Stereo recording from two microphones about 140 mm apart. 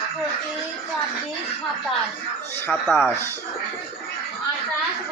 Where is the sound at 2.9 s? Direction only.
15° left (ahead or behind).